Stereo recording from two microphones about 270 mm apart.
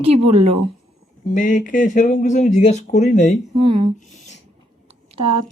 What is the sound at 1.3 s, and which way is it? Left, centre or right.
Speech, left.